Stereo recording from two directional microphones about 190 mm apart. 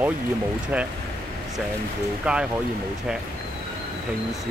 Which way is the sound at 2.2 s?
5° right (ahead or behind).